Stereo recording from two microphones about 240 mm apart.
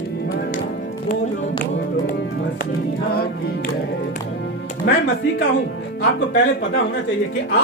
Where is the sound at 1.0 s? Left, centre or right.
Left.